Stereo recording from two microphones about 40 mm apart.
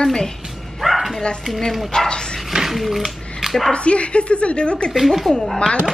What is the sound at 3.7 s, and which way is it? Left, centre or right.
Speech, left.